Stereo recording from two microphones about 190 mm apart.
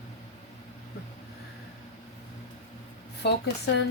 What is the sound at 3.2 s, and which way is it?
Speech, 60° left (ahead or behind).